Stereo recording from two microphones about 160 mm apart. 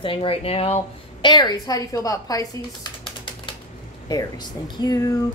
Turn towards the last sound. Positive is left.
turn(degrees=20)  # may be behind; listen again after turning